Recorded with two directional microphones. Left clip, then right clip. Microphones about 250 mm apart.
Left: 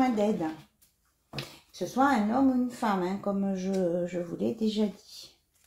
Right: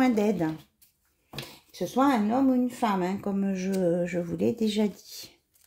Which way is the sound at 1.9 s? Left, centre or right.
Right.